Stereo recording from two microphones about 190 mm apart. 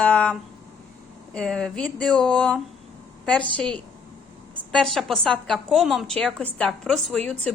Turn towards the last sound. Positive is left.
turn(degrees=0)  # may be behind; listen again after turning